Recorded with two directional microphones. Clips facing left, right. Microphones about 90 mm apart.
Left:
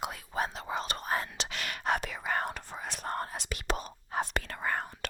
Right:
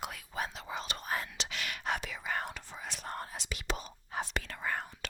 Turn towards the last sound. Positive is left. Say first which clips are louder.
# left 3 dB
turn(degrees=45)  # may be behind; listen again after turning